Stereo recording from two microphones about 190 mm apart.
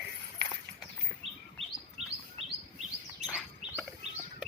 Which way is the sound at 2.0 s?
35° right (ahead or behind).